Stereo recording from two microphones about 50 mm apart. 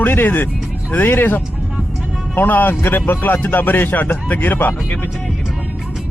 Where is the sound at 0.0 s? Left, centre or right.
Left.